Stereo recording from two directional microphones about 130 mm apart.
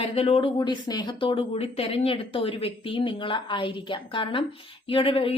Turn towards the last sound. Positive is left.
turn(degrees=45)  # may be behind; listen again after turning